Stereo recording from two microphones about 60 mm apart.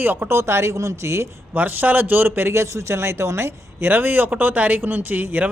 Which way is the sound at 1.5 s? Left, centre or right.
Right.